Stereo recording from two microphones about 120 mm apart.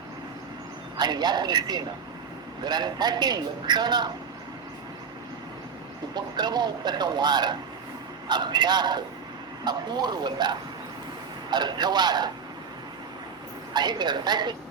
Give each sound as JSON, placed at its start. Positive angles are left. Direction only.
{"t": 0.9, "sound": "a man's voice", "side_deg": -35}
{"t": 6.1, "sound": "a man's voice", "side_deg": -35}
{"t": 13.7, "sound": "a man's voice", "side_deg": -35}